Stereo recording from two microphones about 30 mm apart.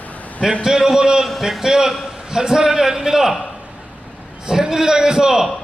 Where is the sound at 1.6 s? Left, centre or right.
Right.